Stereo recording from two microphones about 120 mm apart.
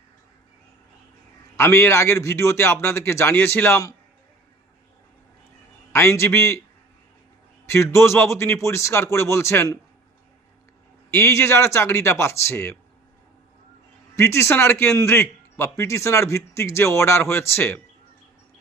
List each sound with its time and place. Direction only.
1.5 s a man's voice: 20° left (ahead or behind)
5.9 s a man's voice: 20° left (ahead or behind)
7.7 s a man's voice: 25° left (ahead or behind)
11.1 s a man's voice: 20° left (ahead or behind)
14.2 s a man's voice: 25° left (ahead or behind)